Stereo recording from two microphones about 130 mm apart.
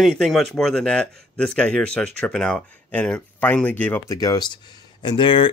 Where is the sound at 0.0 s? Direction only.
Centre (ahead or behind).